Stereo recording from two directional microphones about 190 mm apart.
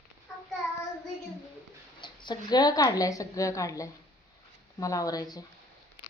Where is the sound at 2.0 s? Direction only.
25° left (ahead or behind).